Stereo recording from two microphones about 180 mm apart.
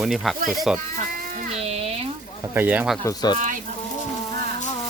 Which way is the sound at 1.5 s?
35° right (ahead or behind).